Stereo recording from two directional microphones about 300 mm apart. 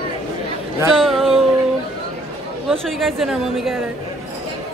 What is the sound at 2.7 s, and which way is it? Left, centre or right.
A woman's voice, centre.